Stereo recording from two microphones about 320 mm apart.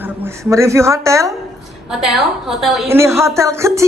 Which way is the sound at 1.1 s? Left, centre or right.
Centre.